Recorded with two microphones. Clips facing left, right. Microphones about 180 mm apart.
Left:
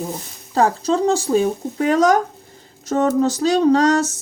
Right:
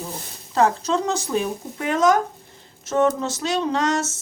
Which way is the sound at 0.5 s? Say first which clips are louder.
Left 3 dB; 35° left (ahead or behind).